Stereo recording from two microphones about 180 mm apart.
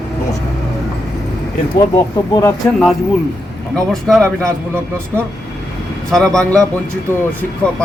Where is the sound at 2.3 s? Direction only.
20° left (ahead or behind).